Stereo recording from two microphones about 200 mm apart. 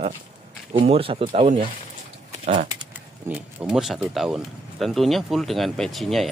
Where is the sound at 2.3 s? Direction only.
30° right (ahead or behind).